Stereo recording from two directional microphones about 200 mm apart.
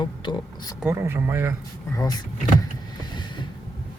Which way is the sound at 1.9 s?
20° left (ahead or behind).